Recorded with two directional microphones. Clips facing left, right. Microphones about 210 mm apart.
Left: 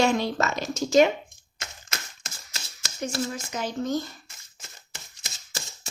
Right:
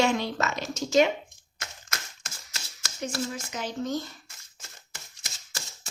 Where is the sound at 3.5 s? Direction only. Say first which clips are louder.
Left 3 dB; 45° left (ahead or behind).